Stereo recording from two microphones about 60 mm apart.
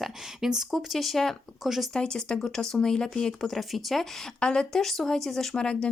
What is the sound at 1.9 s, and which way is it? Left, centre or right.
Speech, centre.